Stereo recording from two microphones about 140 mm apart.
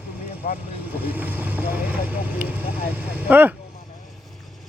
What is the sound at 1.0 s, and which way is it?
Vehicle, 15° right (ahead or behind).